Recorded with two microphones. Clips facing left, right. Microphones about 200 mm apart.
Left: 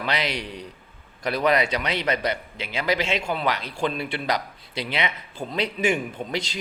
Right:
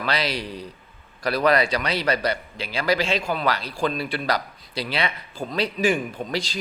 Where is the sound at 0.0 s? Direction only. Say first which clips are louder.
Right 1 dB; 20° left (ahead or behind).